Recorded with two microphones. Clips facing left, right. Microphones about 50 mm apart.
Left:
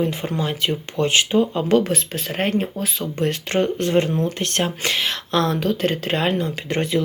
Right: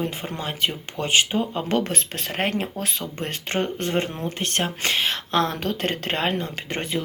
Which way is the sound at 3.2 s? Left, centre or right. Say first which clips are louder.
Left 6 dB; right.